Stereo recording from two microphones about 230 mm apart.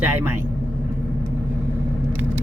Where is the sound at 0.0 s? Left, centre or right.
Centre.